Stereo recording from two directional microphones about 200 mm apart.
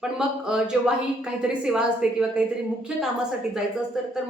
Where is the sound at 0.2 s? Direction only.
5° right (ahead or behind).